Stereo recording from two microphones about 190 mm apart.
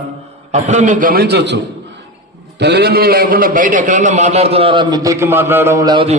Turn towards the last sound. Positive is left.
turn(degrees=-20)  # may be behind; listen again after turning